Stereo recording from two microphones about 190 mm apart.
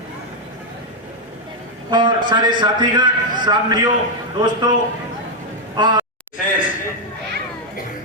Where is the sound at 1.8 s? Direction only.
25° right (ahead or behind).